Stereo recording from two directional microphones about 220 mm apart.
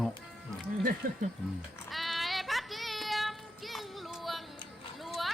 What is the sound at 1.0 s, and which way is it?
Speech, 40° right (ahead or behind).